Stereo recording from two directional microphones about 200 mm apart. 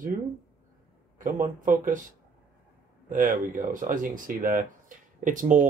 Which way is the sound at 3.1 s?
40° right (ahead or behind).